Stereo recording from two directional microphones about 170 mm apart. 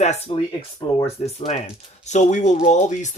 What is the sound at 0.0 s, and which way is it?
Speech, 40° left (ahead or behind).